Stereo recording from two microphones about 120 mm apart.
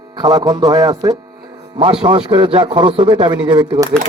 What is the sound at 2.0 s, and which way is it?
A man's voice, 45° right (ahead or behind).